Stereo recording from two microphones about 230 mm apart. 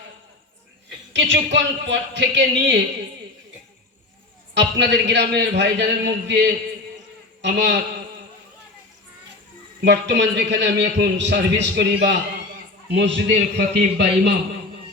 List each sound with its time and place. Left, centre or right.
1.1 s a man's voice: right
4.5 s a man's voice: right
7.4 s a man's voice: right
9.8 s a man's voice: right